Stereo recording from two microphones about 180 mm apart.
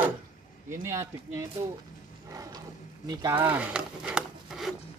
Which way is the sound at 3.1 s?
20° right (ahead or behind).